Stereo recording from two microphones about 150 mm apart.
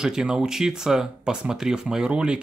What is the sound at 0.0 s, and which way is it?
Speech, 5° right (ahead or behind).